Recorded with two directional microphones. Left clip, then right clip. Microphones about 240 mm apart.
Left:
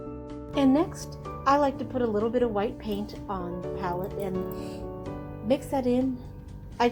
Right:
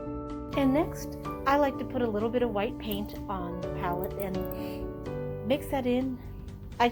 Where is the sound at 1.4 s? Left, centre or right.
Right.